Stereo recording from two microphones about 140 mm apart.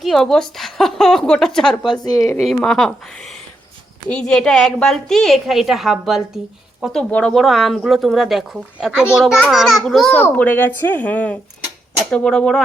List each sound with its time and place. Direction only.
0.0 s a woman's voice: centre (ahead or behind)
2.1 s a woman's voice: 20° left (ahead or behind)
2.4 s a woman's voice: centre (ahead or behind)